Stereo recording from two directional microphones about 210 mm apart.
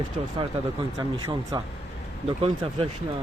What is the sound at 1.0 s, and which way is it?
Speech, 20° right (ahead or behind).